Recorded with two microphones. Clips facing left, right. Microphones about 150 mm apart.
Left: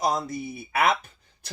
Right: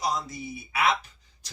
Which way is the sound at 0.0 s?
55° left (ahead or behind).